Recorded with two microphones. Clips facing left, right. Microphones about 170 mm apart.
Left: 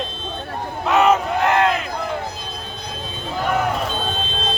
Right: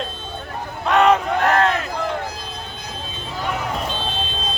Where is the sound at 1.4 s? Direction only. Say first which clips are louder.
Even; 20° left (ahead or behind).